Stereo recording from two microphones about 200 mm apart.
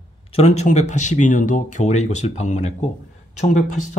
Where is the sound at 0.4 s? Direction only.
35° left (ahead or behind).